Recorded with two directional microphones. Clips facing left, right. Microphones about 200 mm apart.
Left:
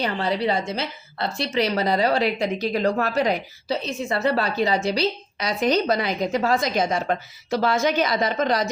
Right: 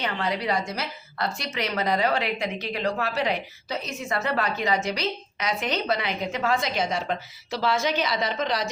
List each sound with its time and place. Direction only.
0.0 s a woman's voice: 30° left (ahead or behind)